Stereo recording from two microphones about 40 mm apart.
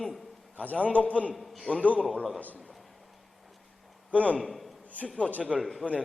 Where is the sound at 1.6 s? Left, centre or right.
Left.